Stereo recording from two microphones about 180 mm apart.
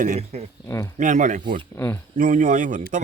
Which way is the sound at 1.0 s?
45° right (ahead or behind).